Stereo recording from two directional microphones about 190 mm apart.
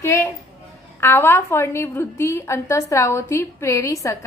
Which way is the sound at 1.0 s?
10° left (ahead or behind).